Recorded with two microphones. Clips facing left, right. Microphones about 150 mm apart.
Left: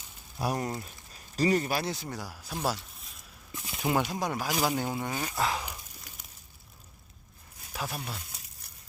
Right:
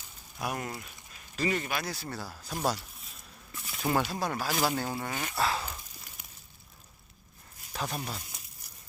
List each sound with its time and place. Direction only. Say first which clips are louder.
0.3 s speech: left 4 dB; 30° left (ahead or behind)
1.9 s speech: left 2 dB; 15° left (ahead or behind)
2.6 s a sound: right 1 dB; centre (ahead or behind)
3.5 s speech: left 1 dB; 15° left (ahead or behind)
7.7 s speech: right 1 dB; 5° left (ahead or behind)